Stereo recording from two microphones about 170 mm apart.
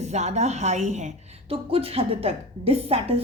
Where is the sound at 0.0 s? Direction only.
40° right (ahead or behind).